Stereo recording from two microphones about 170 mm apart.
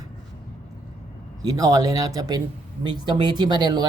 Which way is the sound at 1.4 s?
20° right (ahead or behind).